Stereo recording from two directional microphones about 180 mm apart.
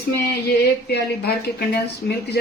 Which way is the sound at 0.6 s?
60° left (ahead or behind).